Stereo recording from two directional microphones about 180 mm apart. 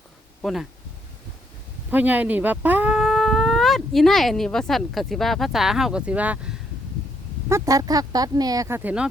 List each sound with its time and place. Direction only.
0.4 s speech: centre (ahead or behind)
1.9 s speech: 10° right (ahead or behind)
7.4 s speech: 15° right (ahead or behind)